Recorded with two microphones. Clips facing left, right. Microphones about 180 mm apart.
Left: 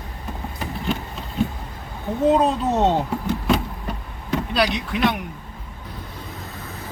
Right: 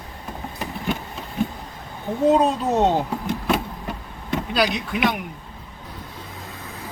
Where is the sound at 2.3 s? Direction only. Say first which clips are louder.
Even; centre (ahead or behind).